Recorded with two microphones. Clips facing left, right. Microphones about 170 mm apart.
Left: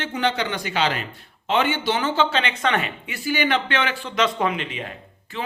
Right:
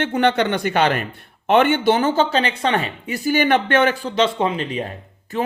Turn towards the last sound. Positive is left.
turn(degrees=-45)  # may be behind; listen again after turning